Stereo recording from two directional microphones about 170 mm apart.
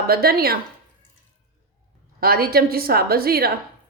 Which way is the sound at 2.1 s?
60° right (ahead or behind).